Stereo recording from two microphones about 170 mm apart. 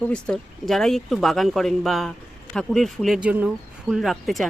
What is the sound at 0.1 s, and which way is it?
Speech, 5° left (ahead or behind).